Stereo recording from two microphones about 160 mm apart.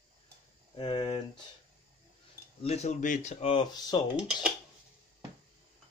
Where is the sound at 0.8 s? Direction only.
30° left (ahead or behind).